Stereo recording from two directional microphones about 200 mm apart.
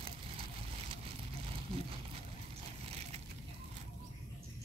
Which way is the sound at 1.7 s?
30° right (ahead or behind).